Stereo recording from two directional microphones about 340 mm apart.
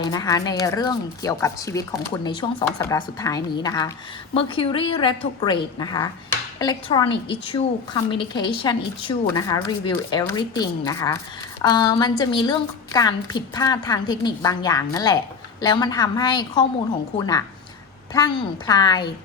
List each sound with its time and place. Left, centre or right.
0.0 s a woman's voice: centre